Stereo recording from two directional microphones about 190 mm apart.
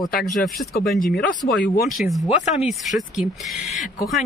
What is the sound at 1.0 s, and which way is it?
Speech, 55° left (ahead or behind).